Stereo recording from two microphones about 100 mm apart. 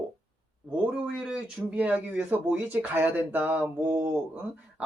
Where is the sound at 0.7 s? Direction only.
10° right (ahead or behind).